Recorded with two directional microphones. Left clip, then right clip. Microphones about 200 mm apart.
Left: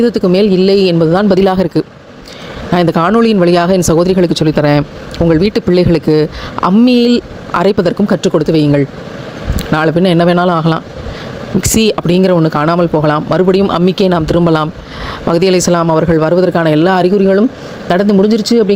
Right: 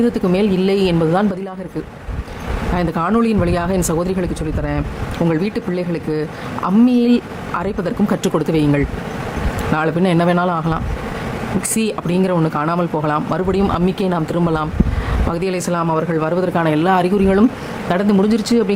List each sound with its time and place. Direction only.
0.0 s speech: 25° left (ahead or behind)
1.3 s speech: 45° left (ahead or behind)
2.7 s speech: 30° left (ahead or behind)